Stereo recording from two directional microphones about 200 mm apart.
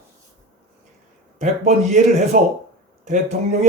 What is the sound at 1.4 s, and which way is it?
A man's voice, 35° right (ahead or behind).